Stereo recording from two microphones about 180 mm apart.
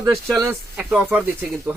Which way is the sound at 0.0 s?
15° right (ahead or behind).